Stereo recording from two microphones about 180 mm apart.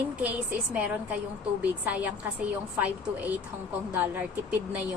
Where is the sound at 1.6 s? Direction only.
10° right (ahead or behind).